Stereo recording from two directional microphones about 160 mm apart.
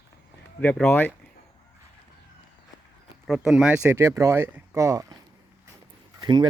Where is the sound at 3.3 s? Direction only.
5° right (ahead or behind); by 5.1 s 20° right (ahead or behind).